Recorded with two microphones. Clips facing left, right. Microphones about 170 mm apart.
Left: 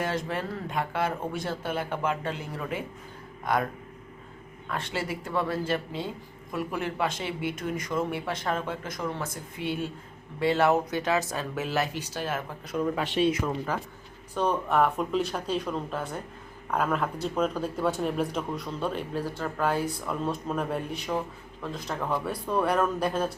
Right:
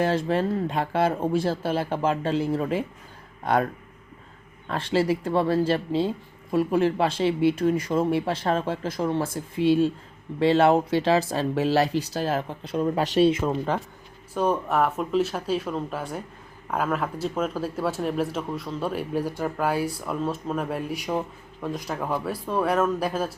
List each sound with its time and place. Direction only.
0.0 s speech: 30° right (ahead or behind)
4.7 s speech: 30° right (ahead or behind)
14.3 s speech: 10° right (ahead or behind)